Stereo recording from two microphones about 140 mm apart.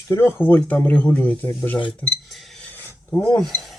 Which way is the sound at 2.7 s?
15° left (ahead or behind).